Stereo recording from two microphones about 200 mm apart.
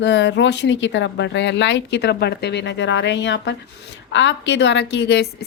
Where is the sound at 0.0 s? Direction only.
60° left (ahead or behind).